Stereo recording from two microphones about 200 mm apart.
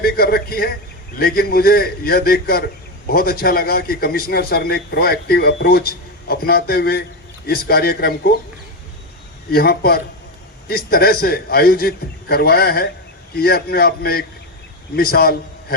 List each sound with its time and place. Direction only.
0.0 s a man's voice: 50° left (ahead or behind)
9.5 s a man's voice: 50° left (ahead or behind)